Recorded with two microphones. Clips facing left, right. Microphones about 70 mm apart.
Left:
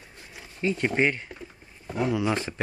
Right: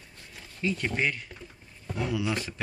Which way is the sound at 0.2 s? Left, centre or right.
Centre.